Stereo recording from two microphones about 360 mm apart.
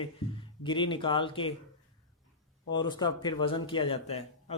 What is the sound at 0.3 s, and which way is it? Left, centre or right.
Speech, centre.